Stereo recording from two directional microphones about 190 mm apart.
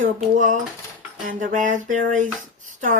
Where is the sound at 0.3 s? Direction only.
40° right (ahead or behind).